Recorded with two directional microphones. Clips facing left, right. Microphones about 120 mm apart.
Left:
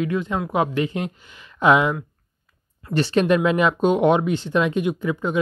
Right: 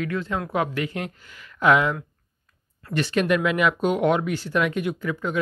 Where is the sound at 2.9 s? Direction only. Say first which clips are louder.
Left 4 dB; 30° left (ahead or behind).